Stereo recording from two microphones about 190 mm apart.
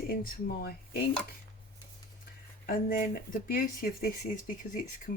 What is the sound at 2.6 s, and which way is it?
Speech, 50° left (ahead or behind).